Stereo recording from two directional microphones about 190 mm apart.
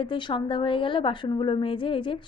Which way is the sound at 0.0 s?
25° left (ahead or behind).